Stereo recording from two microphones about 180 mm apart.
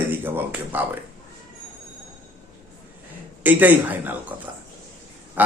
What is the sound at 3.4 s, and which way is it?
Speech, 10° right (ahead or behind).